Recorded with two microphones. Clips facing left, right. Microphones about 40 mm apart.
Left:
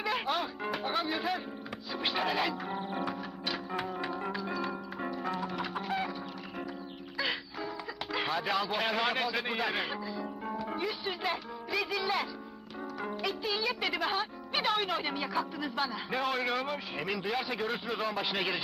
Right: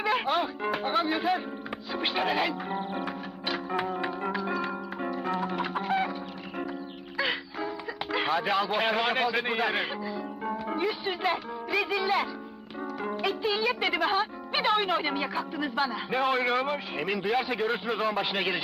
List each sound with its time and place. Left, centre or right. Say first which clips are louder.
0.0 s a man's voice: right 5 dB; centre
2.9 s music: right 2 dB; centre
7.2 s music: right 5 dB; centre
8.1 s a man's voice: right 5 dB; centre